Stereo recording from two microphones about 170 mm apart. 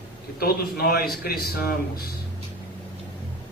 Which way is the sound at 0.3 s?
65° left (ahead or behind).